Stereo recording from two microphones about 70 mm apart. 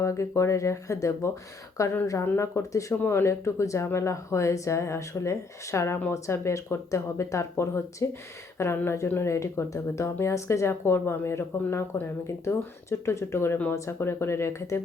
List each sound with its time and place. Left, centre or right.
0.0 s speech: left
2.2 s speech: left
2.6 s speech: left
3.0 s speech: left